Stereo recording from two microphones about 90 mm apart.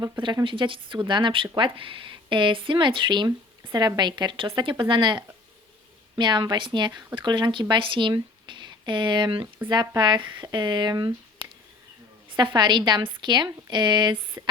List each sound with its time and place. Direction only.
0.4 s speech: 65° right (ahead or behind)
12.3 s speech: 60° right (ahead or behind)